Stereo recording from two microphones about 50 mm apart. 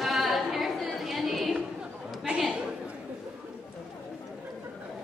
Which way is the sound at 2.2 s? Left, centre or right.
Centre.